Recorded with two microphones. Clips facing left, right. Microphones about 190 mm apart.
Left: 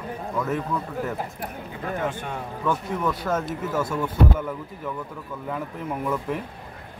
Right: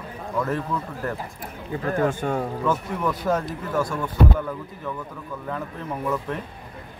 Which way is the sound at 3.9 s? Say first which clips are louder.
Left 1 dB; 5° left (ahead or behind).